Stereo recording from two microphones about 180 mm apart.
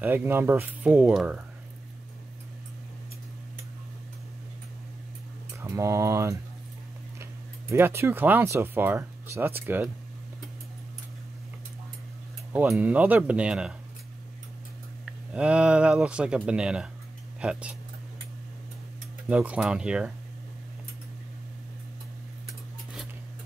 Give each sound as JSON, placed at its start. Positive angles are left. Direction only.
{"t": 0.0, "sound": "speech", "side_deg": -10}
{"t": 5.6, "sound": "speech", "side_deg": -15}
{"t": 7.7, "sound": "speech", "side_deg": -15}
{"t": 12.5, "sound": "speech", "side_deg": -10}
{"t": 15.0, "sound": "speech", "side_deg": -5}
{"t": 19.2, "sound": "speech", "side_deg": -5}